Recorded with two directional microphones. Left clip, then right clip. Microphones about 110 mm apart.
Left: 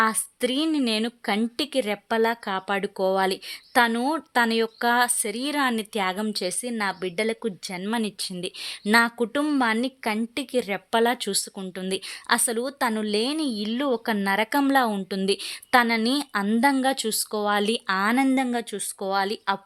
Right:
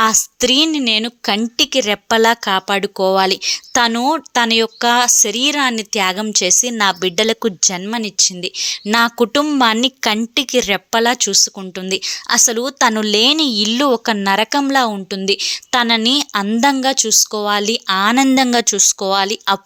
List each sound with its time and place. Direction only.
0.0 s a woman's voice: 30° right (ahead or behind)
2.0 s a woman's voice: 40° right (ahead or behind)
7.9 s speech: 15° right (ahead or behind)
8.9 s a woman's voice: 35° right (ahead or behind)
9.1 s a woman's voice: 50° right (ahead or behind); by 18.2 s 30° right (ahead or behind)
18.5 s speech: 55° right (ahead or behind)
18.8 s a woman's voice: 40° right (ahead or behind)